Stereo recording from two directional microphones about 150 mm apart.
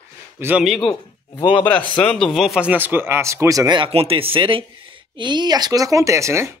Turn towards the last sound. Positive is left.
turn(degrees=-20)  # may be behind; listen again after turning